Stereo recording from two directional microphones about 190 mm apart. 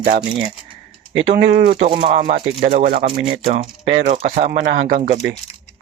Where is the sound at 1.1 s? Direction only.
70° right (ahead or behind).